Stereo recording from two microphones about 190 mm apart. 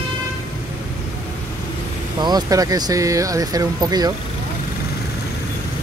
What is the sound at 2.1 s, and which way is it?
Speech, 20° right (ahead or behind).